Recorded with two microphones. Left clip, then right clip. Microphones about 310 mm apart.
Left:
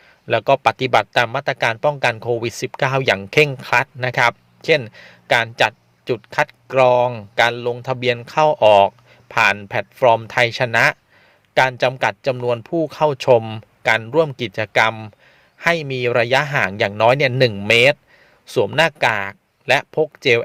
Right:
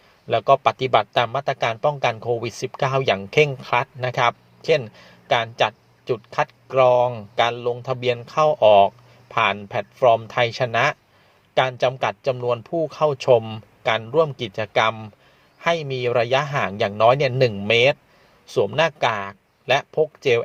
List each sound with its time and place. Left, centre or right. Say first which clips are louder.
0.3 s speech: left 2 dB; left